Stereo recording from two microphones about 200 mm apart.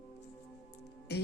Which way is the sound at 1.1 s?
55° left (ahead or behind).